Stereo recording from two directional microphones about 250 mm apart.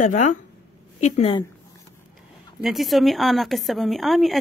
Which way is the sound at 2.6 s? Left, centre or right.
Centre.